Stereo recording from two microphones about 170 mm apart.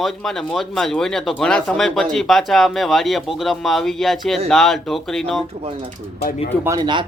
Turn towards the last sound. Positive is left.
turn(degrees=-25)  # may be behind; listen again after turning